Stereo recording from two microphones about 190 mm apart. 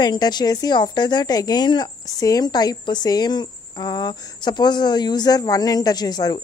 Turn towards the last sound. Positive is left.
turn(degrees=20)  # may be behind; listen again after turning